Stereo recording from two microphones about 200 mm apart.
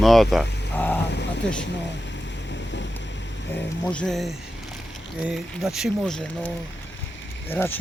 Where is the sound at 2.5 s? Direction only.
60° left (ahead or behind).